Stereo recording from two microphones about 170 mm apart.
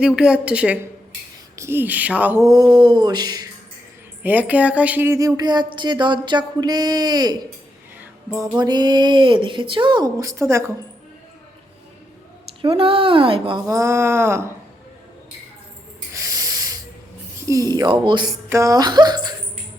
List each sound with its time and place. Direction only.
0.0 s speech: 5° right (ahead or behind); by 3.4 s 25° right (ahead or behind)
4.2 s speech: 10° right (ahead or behind)
12.6 s speech: 30° right (ahead or behind)
13.7 s speech: 15° right (ahead or behind)
16.1 s snort: 20° right (ahead or behind)
17.4 s speech: 20° right (ahead or behind)
18.4 s speech: 20° right (ahead or behind)